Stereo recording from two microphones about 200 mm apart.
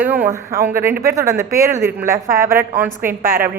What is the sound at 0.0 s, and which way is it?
A woman's voice, 10° right (ahead or behind).